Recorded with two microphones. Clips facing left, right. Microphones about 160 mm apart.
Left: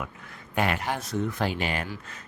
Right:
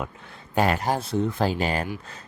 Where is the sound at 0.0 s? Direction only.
30° right (ahead or behind).